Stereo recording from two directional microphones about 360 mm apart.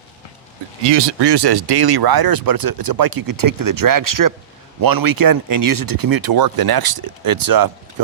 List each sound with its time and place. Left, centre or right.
1.2 s speech: right